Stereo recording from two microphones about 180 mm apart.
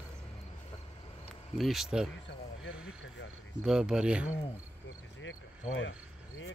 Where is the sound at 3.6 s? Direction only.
5° right (ahead or behind).